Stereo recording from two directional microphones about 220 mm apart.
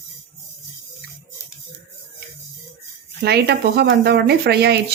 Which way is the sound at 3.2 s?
50° right (ahead or behind).